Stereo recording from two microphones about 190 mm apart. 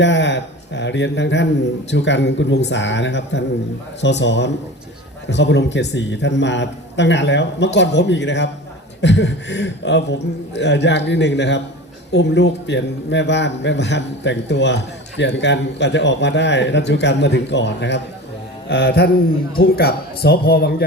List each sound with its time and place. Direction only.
0.0 s a man's voice: 70° left (ahead or behind)